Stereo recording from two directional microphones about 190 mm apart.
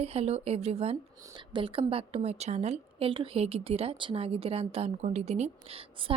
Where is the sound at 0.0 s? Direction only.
35° right (ahead or behind).